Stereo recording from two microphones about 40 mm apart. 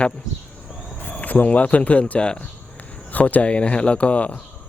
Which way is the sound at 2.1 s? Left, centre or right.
Left.